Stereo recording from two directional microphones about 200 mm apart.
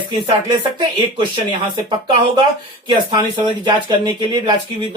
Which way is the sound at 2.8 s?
25° right (ahead or behind).